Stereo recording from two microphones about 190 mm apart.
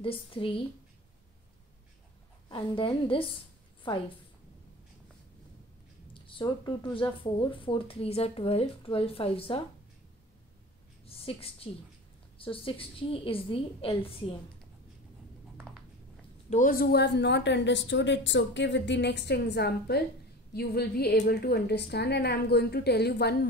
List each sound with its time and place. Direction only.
0.0 s speech: 30° left (ahead or behind)
2.5 s speech: 25° left (ahead or behind)
6.1 s speech: 25° left (ahead or behind)
11.1 s a woman's voice: 30° left (ahead or behind)
16.4 s a woman's voice: 45° left (ahead or behind); by 23.3 s 60° left (ahead or behind)